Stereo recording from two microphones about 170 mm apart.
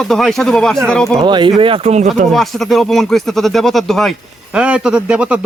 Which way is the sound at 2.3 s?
Centre (ahead or behind).